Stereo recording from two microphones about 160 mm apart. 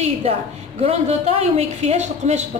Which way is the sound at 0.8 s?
40° right (ahead or behind).